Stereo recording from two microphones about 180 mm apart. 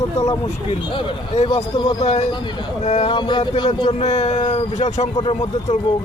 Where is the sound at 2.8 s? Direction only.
35° left (ahead or behind).